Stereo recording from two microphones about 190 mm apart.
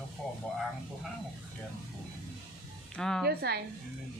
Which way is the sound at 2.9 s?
5° left (ahead or behind).